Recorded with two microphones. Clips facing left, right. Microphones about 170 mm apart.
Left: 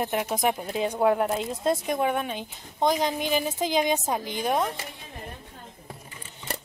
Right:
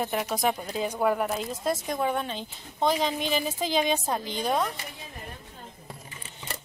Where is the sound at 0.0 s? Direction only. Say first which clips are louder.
Left 1 dB; 15° left (ahead or behind).